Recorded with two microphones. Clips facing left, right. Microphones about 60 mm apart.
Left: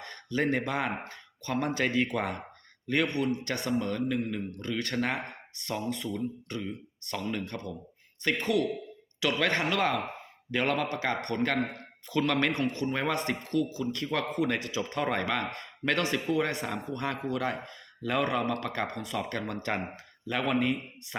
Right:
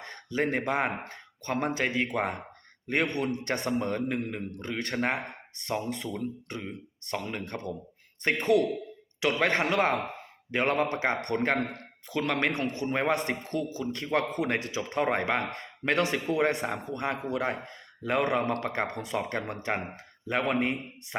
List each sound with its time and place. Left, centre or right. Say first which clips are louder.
0.0 s a man's voice: even; right